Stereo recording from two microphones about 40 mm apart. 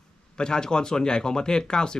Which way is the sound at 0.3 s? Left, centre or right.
Centre.